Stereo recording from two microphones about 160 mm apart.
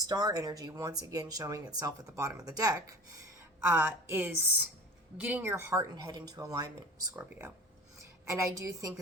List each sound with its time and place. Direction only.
0.0 s speech: 25° right (ahead or behind)